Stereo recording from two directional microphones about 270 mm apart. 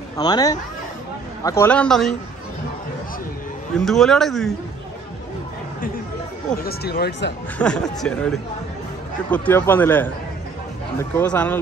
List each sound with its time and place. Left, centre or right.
0.2 s speech: centre
3.7 s speech: centre
6.6 s speech: left
7.5 s speech: centre
11.1 s speech: centre